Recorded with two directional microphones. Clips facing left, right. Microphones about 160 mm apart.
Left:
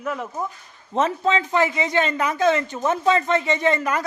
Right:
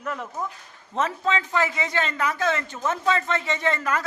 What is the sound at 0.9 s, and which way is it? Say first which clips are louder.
A man's voice: left 4 dB; 20° left (ahead or behind).